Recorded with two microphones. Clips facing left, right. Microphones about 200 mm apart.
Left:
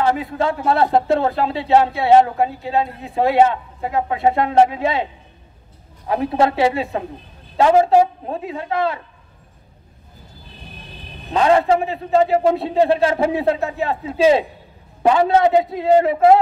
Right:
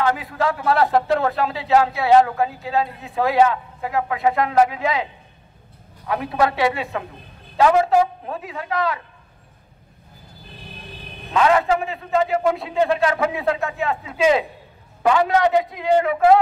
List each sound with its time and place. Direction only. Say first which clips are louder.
0.0 s speech: left 2 dB; 30° left (ahead or behind)
6.0 s speech: left 3 dB; 30° left (ahead or behind)
11.3 s a man's voice: left 3 dB; 30° left (ahead or behind)